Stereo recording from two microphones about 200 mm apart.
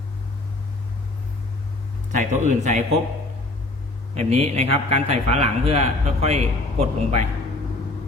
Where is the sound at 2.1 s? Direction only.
35° right (ahead or behind).